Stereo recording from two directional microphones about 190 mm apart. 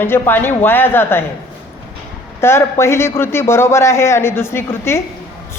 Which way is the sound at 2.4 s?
15° left (ahead or behind).